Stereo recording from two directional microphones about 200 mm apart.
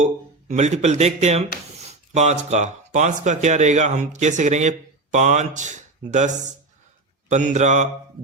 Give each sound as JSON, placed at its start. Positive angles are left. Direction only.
{"t": 0.0, "sound": "speech", "side_deg": -35}